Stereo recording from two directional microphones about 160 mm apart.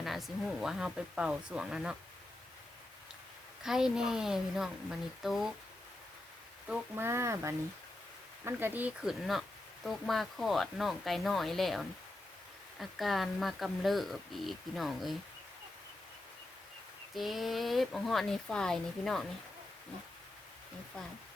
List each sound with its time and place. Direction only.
0.0 s speech: centre (ahead or behind)
3.6 s speech: 5° right (ahead or behind)
6.7 s speech: 15° right (ahead or behind)
17.2 s speech: centre (ahead or behind)